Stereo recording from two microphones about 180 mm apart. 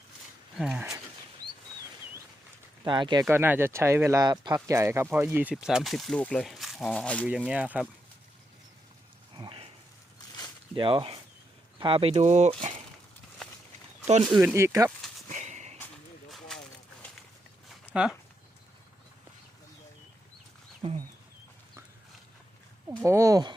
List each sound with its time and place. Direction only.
0.5 s speech: 5° right (ahead or behind)
2.8 s speech: 25° right (ahead or behind)
3.2 s speech: 10° right (ahead or behind); by 7.3 s 5° left (ahead or behind)
7.3 s speech: 5° right (ahead or behind)
9.3 s a sound: 25° right (ahead or behind)
10.2 s a sound: 20° left (ahead or behind)
10.8 s speech: 30° right (ahead or behind)
14.3 s speech: 10° right (ahead or behind)
15.3 s a sound: 40° right (ahead or behind)
17.9 s speech: 5° right (ahead or behind)
20.8 s speech: 30° right (ahead or behind)
23.0 s speech: 15° right (ahead or behind)